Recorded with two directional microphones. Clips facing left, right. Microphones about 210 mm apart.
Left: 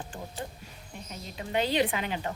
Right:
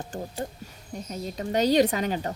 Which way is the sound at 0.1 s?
40° right (ahead or behind).